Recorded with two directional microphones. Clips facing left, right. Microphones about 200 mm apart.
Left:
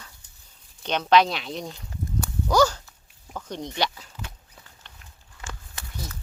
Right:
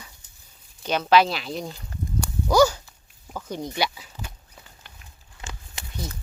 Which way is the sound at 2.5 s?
10° right (ahead or behind).